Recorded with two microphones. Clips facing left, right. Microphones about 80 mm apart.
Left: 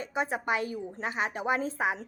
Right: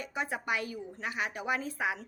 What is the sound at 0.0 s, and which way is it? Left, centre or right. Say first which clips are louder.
A woman's voice: left 4 dB; left.